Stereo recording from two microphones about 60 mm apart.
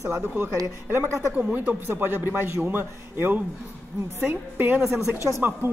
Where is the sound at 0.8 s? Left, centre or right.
Right.